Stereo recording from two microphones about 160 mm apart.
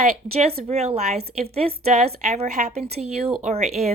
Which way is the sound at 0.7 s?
40° right (ahead or behind).